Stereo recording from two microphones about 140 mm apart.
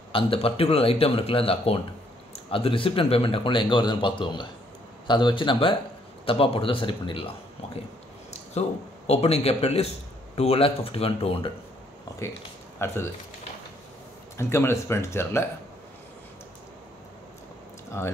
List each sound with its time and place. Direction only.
0.1 s speech: 40° left (ahead or behind)
8.3 s a man's voice: 50° left (ahead or behind)
12.7 s speech: 15° left (ahead or behind)
14.3 s speech: 20° left (ahead or behind)
18.0 s speech: 15° left (ahead or behind)